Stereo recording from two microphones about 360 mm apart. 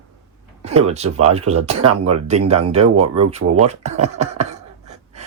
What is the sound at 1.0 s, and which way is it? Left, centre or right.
Speech, right.